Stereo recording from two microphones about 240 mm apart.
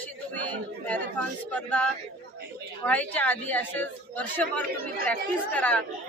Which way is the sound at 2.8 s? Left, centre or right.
Centre.